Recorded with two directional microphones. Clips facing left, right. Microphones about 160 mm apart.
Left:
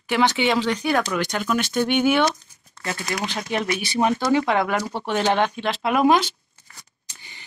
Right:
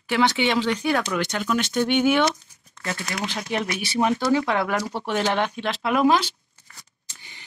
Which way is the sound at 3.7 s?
25° left (ahead or behind).